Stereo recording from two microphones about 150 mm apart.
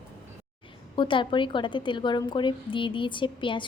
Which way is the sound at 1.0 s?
35° left (ahead or behind).